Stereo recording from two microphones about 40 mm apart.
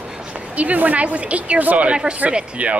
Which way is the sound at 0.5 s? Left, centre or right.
Right.